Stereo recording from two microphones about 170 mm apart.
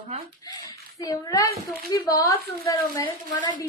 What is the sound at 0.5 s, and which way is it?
A woman's voice, 25° left (ahead or behind).